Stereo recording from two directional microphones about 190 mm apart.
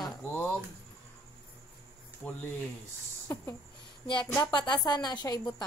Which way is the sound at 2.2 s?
5° left (ahead or behind).